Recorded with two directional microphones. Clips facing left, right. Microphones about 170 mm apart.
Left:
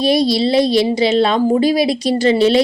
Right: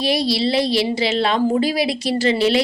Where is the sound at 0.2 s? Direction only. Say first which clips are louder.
Left 5 dB; 15° left (ahead or behind).